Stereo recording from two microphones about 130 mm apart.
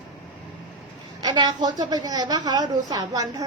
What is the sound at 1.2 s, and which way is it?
A woman's voice, 30° right (ahead or behind).